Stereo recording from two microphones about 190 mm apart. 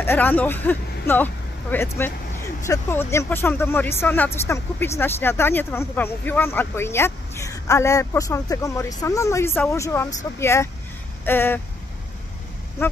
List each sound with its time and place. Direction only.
0.0 s speech: 10° left (ahead or behind)